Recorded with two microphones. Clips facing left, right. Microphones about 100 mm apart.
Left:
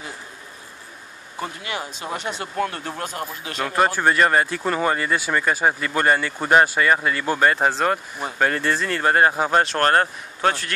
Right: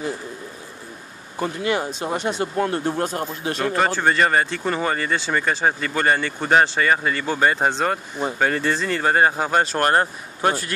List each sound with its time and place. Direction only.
1.4 s speech: 35° right (ahead or behind)
2.1 s speech: 25° right (ahead or behind)
3.5 s speech: 5° left (ahead or behind)
9.8 s speech: 15° right (ahead or behind)